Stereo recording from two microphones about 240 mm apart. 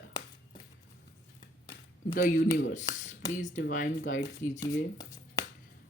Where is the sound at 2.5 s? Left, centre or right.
Left.